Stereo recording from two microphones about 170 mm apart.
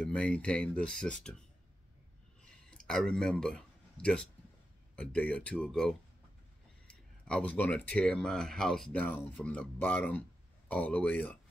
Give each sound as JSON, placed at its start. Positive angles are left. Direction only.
{"t": 0.0, "sound": "speech", "side_deg": 5}
{"t": 2.4, "sound": "a sound", "side_deg": 5}
{"t": 4.9, "sound": "speech", "side_deg": 5}